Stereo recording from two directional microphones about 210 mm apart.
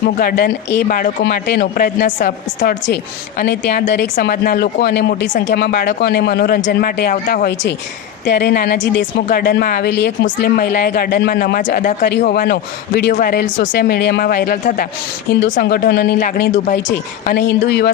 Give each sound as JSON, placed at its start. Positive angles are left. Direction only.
{"t": 0.2, "sound": "a woman's voice", "side_deg": 45}
{"t": 4.1, "sound": "a woman's voice", "side_deg": 45}
{"t": 15.3, "sound": "speech", "side_deg": 60}
{"t": 15.9, "sound": "a woman's voice", "side_deg": 50}